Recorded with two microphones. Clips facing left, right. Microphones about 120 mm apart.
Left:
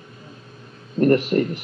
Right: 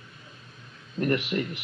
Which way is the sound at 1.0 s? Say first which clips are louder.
Left 9 dB; 40° left (ahead or behind).